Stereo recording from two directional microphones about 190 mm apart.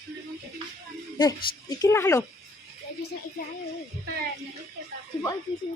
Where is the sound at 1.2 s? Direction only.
20° left (ahead or behind).